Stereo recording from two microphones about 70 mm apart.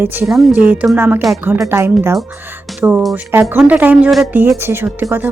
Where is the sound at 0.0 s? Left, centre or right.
Right.